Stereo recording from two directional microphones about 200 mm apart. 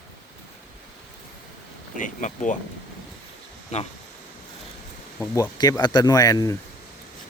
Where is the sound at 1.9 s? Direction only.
40° left (ahead or behind).